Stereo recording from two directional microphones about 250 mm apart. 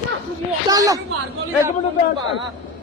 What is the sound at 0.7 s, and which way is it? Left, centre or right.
Speech, centre.